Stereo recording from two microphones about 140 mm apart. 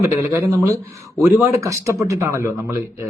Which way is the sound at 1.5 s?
20° right (ahead or behind).